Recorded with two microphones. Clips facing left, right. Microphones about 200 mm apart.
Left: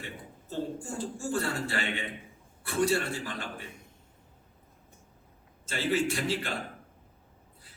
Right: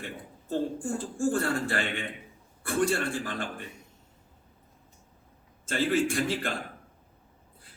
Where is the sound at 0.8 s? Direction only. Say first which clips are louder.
Right 6 dB; 50° right (ahead or behind).